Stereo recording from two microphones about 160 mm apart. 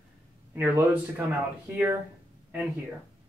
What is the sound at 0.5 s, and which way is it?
Speech, 20° right (ahead or behind).